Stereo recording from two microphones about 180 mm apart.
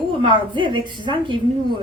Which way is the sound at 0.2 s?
25° right (ahead or behind).